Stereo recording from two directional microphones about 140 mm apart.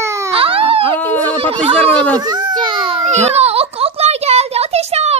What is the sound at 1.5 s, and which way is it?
Child singing, 40° right (ahead or behind).